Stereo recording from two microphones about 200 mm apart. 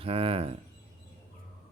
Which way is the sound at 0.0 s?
30° right (ahead or behind).